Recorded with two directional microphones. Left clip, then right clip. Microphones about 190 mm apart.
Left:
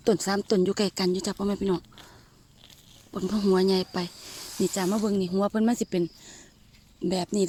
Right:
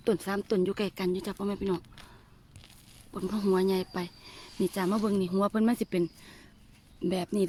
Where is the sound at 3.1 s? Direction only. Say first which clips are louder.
Left 4 dB; 20° left (ahead or behind).